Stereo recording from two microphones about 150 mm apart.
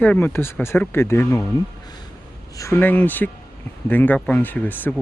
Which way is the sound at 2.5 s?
20° left (ahead or behind).